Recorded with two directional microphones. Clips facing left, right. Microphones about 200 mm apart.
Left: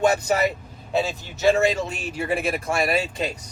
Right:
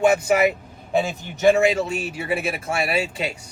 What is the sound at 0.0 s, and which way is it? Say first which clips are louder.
Speech: right 3 dB; 10° right (ahead or behind).